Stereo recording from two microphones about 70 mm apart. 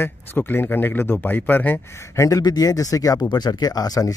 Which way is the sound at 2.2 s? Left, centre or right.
Left.